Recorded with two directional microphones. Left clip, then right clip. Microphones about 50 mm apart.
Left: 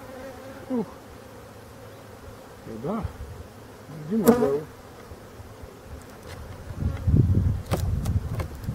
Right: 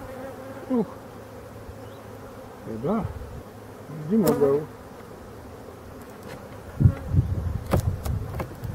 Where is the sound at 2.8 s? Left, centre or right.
Centre.